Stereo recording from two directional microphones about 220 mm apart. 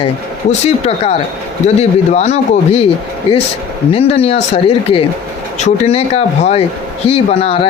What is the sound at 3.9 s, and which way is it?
Speech, 25° left (ahead or behind).